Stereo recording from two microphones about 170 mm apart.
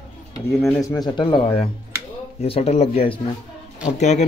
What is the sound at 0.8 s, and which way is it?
Speech, 20° left (ahead or behind).